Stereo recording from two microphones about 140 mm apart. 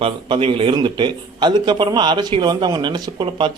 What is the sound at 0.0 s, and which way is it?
A man's voice, 40° right (ahead or behind).